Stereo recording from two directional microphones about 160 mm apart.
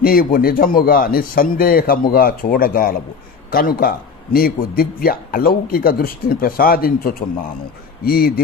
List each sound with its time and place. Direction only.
0.0 s a man's voice: 65° left (ahead or behind)